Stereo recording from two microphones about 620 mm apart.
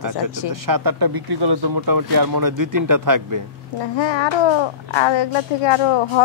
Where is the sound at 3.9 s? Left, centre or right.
Left.